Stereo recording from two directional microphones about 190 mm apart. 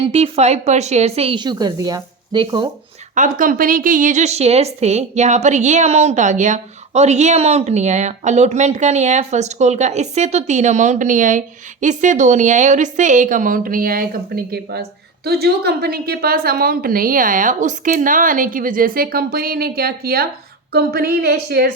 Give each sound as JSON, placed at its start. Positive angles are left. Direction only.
{"t": 0.0, "sound": "a woman's voice", "side_deg": -30}
{"t": 3.2, "sound": "a woman's voice", "side_deg": -45}